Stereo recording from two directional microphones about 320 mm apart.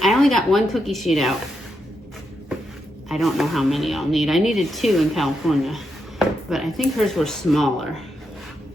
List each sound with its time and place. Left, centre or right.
0.0 s speech: centre
3.1 s speech: centre